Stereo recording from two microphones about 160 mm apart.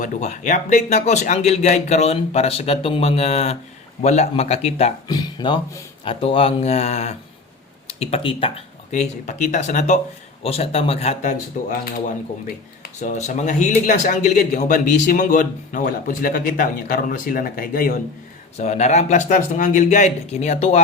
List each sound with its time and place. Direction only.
0.0 s speech: 50° left (ahead or behind)
5.0 s speech: 25° left (ahead or behind)
8.9 s speech: 45° left (ahead or behind)
10.4 s speech: 40° left (ahead or behind)
11.7 s speech: 65° left (ahead or behind)
12.8 s a man's voice: 50° left (ahead or behind)
18.5 s speech: 45° left (ahead or behind)